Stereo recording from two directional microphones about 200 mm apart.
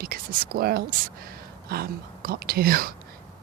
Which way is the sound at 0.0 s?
45° right (ahead or behind).